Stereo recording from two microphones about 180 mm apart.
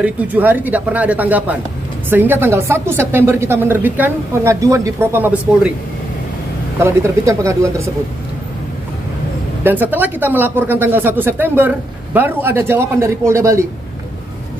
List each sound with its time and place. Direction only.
0.0 s speech: 10° right (ahead or behind)
6.8 s speech: 15° right (ahead or behind)
9.6 s speech: 10° right (ahead or behind)